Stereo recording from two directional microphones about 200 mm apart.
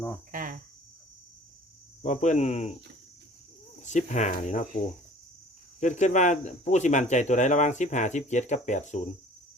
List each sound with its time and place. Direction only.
0.3 s cricket: 40° right (ahead or behind)
2.0 s speech: 40° left (ahead or behind)
3.8 s speech: 35° left (ahead or behind)